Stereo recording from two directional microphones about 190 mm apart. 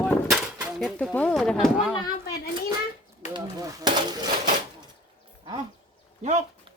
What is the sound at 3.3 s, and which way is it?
Speech, 20° right (ahead or behind).